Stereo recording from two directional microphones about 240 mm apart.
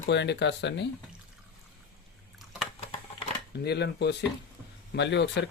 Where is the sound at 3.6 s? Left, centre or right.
Left.